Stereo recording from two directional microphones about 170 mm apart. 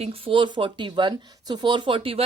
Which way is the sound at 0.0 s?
35° right (ahead or behind).